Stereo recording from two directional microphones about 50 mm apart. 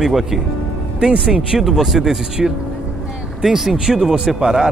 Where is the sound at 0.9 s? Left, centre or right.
Centre.